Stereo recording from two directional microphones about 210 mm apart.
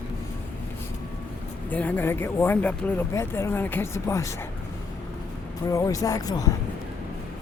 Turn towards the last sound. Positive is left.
turn(degrees=15)  # may be behind; listen again after turning